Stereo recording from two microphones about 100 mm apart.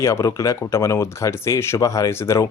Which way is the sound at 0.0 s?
30° left (ahead or behind).